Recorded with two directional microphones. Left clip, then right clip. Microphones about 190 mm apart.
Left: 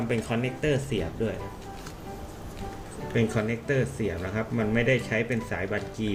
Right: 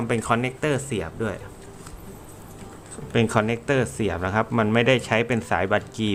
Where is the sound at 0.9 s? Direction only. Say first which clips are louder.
Right 2 dB; 45° right (ahead or behind).